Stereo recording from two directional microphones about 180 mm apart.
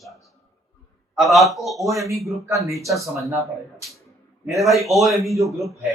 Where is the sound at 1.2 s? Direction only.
Centre (ahead or behind).